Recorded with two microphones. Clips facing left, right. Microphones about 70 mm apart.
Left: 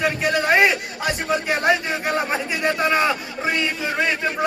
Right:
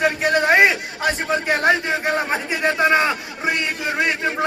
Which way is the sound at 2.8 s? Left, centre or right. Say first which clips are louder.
Right 3 dB; right.